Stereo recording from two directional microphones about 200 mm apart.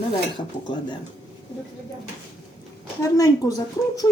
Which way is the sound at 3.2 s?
15° left (ahead or behind).